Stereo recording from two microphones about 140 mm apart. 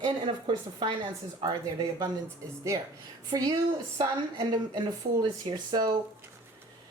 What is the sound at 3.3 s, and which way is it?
Speech, 30° right (ahead or behind).